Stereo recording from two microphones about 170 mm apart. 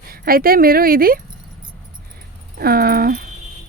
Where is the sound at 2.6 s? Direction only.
60° right (ahead or behind).